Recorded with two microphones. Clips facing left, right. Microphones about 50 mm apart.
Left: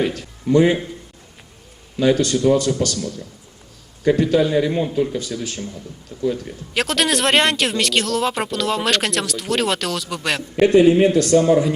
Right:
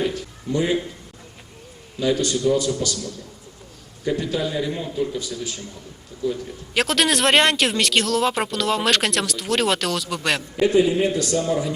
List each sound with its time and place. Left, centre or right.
0.0 s speech: left
2.0 s a man's voice: left
6.7 s speech: centre
10.6 s a man's voice: left